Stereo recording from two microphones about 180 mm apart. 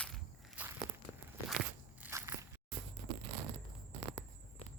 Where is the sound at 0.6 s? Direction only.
10° right (ahead or behind).